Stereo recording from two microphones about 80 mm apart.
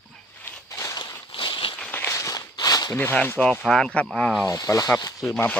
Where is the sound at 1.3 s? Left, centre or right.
Left.